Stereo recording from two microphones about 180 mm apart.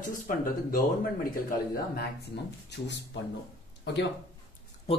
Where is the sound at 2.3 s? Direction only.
70° left (ahead or behind).